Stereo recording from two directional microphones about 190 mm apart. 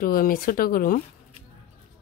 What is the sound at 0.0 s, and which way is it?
Speech, 50° left (ahead or behind).